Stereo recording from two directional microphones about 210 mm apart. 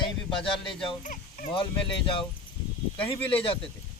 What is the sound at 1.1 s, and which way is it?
Speech, 40° left (ahead or behind).